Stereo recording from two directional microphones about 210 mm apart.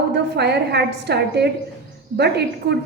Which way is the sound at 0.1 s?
50° right (ahead or behind).